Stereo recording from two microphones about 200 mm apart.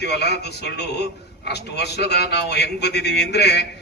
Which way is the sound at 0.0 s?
55° left (ahead or behind).